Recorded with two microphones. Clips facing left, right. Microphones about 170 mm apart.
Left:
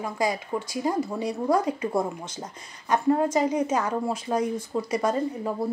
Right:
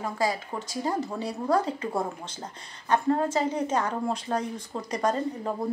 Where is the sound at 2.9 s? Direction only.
15° left (ahead or behind).